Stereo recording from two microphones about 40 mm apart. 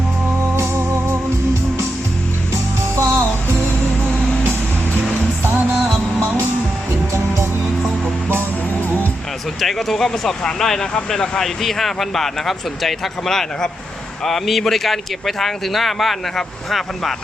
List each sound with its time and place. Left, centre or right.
0.5 s organ: right
2.9 s music: right
6.2 s music: right
9.6 s speech: centre